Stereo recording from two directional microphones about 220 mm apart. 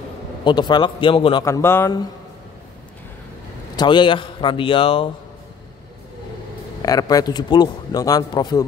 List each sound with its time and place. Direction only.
0.4 s a man's voice: 20° left (ahead or behind)
1.4 s a man's voice: 10° left (ahead or behind)
3.7 s a man's voice: 20° left (ahead or behind)
6.8 s a man's voice: 15° left (ahead or behind)